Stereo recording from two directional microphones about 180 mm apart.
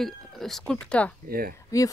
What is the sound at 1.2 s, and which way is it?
Speech, 55° right (ahead or behind).